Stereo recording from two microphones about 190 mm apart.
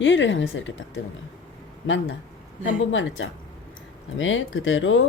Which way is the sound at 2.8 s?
90° left.